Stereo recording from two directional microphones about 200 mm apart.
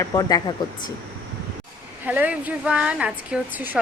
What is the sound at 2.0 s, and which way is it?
Speech, 10° right (ahead or behind).